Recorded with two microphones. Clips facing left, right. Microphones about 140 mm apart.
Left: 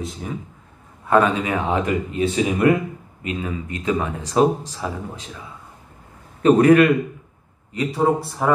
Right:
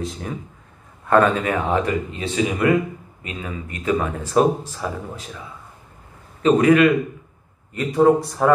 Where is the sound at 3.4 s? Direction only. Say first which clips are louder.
Right 2 dB; 25° left (ahead or behind).